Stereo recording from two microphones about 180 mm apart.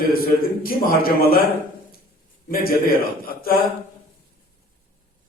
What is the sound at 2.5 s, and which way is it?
A man's voice, 55° left (ahead or behind).